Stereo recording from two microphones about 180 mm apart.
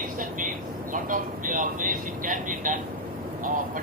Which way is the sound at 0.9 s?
45° right (ahead or behind).